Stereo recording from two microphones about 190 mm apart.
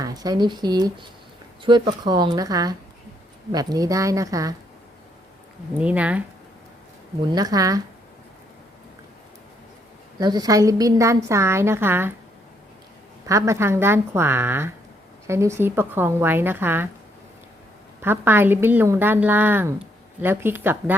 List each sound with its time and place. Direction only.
0.0 s a woman's voice: 20° right (ahead or behind)
5.8 s a woman's voice: 5° right (ahead or behind)
7.3 s speech: 20° right (ahead or behind)
10.2 s a woman's voice: 20° right (ahead or behind)
13.2 s a woman's voice: 15° right (ahead or behind)
18.0 s a woman's voice: 10° right (ahead or behind)